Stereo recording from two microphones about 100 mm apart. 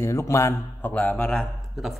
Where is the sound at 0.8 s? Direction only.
20° left (ahead or behind).